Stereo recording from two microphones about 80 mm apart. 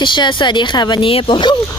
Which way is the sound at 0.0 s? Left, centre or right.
Left.